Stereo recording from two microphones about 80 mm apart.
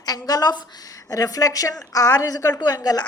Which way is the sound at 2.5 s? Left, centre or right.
Left.